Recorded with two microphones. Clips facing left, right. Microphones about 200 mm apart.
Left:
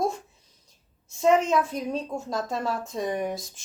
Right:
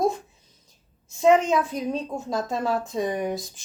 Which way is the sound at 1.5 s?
Centre (ahead or behind).